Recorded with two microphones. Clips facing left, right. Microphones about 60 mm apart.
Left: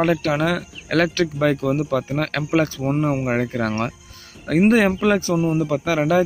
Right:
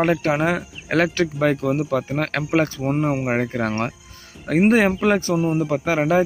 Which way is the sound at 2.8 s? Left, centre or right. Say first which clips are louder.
Even; right.